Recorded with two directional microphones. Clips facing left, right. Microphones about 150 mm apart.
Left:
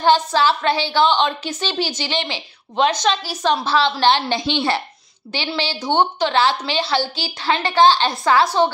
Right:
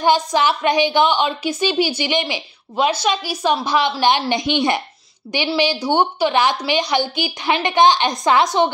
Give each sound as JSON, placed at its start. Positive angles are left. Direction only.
{"t": 0.0, "sound": "a woman's voice", "side_deg": -15}